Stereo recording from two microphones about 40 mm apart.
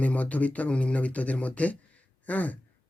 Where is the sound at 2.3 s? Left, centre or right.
Left.